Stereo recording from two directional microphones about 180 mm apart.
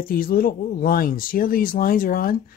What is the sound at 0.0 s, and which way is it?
Speech, 55° left (ahead or behind).